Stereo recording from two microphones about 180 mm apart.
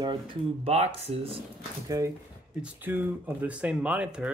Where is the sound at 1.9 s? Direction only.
20° right (ahead or behind).